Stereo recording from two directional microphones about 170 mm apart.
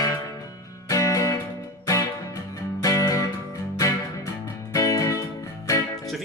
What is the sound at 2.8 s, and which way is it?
Music, 20° left (ahead or behind).